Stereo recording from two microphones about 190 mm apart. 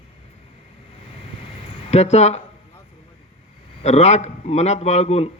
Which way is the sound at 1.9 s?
35° left (ahead or behind).